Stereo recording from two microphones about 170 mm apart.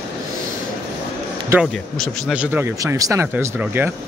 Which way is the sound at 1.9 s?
Centre (ahead or behind).